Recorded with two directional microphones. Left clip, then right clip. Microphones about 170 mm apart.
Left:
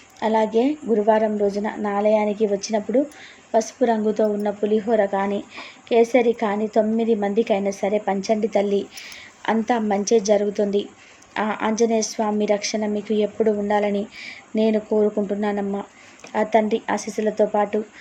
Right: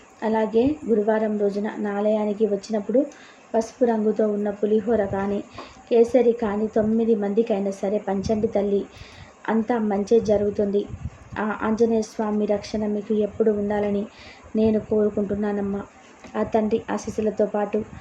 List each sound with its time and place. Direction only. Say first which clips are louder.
0.2 s a woman's voice: left 2 dB; 20° left (ahead or behind)